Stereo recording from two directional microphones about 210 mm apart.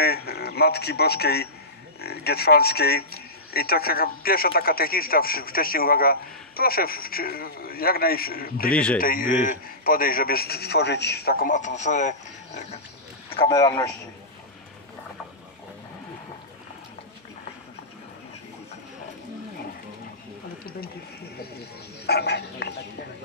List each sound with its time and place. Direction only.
0.0 s speech: 50° left (ahead or behind)
13.4 s a man's voice: 20° left (ahead or behind)
22.0 s frog: 50° left (ahead or behind)